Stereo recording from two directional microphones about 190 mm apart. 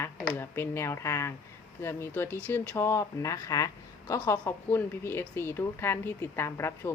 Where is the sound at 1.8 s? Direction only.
15° left (ahead or behind).